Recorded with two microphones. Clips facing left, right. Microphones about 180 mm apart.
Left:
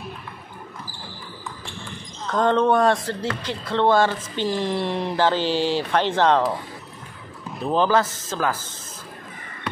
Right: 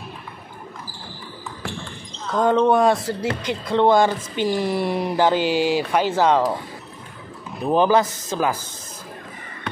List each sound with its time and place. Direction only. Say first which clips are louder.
2.3 s speech: right 2 dB; 10° right (ahead or behind)
7.6 s speech: right 3 dB; 15° right (ahead or behind)